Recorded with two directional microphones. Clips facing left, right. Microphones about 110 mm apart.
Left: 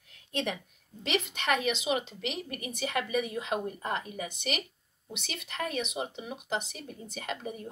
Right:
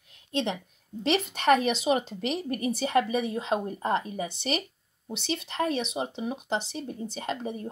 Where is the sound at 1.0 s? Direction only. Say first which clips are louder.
Right 5 dB; 35° right (ahead or behind).